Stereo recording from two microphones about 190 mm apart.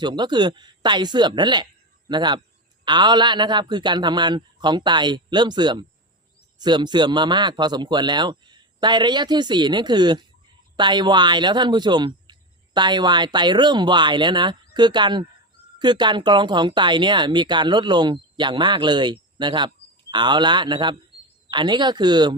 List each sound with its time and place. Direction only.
0.0 s speech: 25° right (ahead or behind)